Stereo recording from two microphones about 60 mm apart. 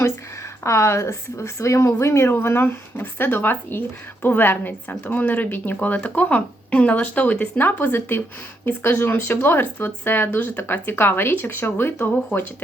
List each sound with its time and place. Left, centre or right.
0.6 s speech: left
2.3 s a woman's voice: left